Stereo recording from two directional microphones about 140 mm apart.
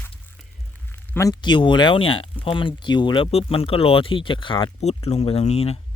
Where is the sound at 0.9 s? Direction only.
15° left (ahead or behind).